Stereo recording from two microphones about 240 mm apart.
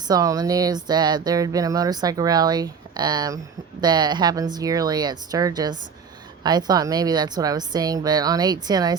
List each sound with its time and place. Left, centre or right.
0.1 s speech: centre